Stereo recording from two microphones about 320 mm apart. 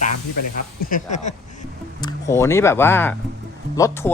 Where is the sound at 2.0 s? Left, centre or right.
Centre.